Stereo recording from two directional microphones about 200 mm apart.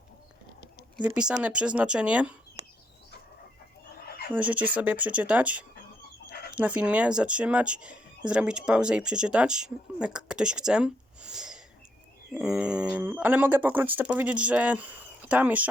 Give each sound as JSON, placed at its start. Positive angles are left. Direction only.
{"t": 1.0, "sound": "speech", "side_deg": -5}
{"t": 4.3, "sound": "speech", "side_deg": -5}